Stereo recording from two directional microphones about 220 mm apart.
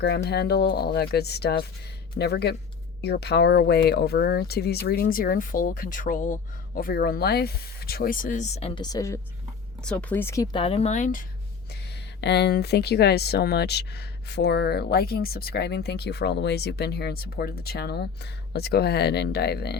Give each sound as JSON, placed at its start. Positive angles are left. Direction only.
{"t": 0.0, "sound": "speech", "side_deg": 45}
{"t": 11.7, "sound": "speech", "side_deg": 50}